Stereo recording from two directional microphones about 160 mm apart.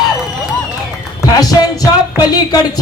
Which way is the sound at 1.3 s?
25° left (ahead or behind).